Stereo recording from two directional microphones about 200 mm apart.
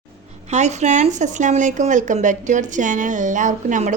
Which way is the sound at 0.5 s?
35° right (ahead or behind).